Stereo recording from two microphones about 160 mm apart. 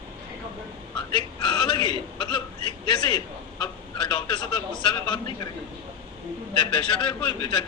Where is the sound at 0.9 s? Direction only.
30° left (ahead or behind).